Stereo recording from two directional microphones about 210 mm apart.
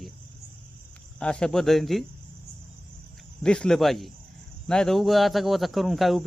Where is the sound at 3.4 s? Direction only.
5° left (ahead or behind).